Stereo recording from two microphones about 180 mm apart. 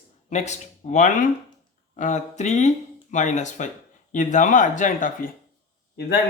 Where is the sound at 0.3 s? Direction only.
40° left (ahead or behind).